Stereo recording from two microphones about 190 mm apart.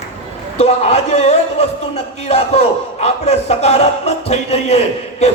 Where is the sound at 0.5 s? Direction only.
35° left (ahead or behind).